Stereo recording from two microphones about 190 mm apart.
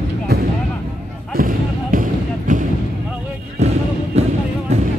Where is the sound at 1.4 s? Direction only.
45° right (ahead or behind).